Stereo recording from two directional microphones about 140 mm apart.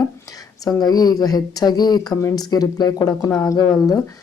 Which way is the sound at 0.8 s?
30° left (ahead or behind).